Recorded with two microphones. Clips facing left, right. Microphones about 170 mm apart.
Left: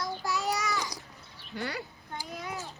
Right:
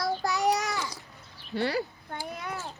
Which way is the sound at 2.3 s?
60° right (ahead or behind).